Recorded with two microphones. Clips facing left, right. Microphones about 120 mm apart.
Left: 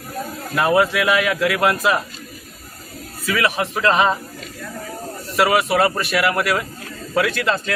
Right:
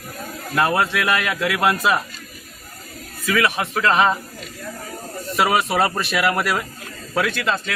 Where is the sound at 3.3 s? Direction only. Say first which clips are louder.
Even; 20° left (ahead or behind).